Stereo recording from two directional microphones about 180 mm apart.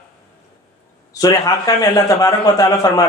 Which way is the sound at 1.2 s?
20° left (ahead or behind).